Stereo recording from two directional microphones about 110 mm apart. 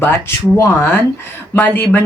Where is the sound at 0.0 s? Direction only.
25° left (ahead or behind).